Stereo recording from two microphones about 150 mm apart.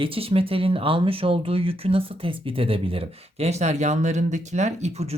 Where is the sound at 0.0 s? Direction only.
40° right (ahead or behind).